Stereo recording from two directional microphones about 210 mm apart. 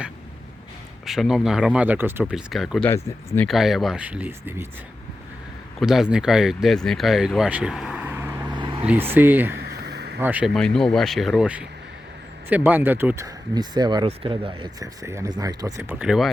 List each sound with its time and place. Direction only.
1.0 s speech: centre (ahead or behind)
2.9 s speech: 15° left (ahead or behind)
3.4 s speech: centre (ahead or behind)
5.8 s speech: centre (ahead or behind)
8.5 s vehicle: 20° right (ahead or behind)
8.8 s speech: 10° right (ahead or behind)
9.6 s a sound: 50° right (ahead or behind)
10.2 s speech: 10° right (ahead or behind)
15.8 s speech: 5° right (ahead or behind)